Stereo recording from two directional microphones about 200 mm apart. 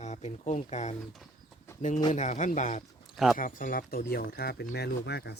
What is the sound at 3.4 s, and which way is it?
Speech, 45° left (ahead or behind).